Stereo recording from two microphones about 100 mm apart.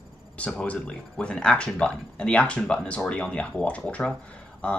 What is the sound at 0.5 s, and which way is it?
Speech, 10° left (ahead or behind).